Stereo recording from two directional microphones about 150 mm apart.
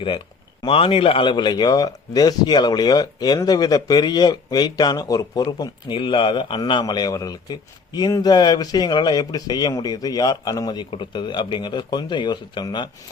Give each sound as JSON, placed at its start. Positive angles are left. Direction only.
{"t": 0.6, "sound": "speech", "side_deg": 35}